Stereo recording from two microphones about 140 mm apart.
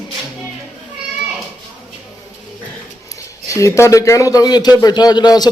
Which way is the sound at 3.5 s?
20° left (ahead or behind).